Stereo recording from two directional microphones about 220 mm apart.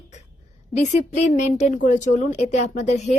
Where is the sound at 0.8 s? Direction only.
30° left (ahead or behind).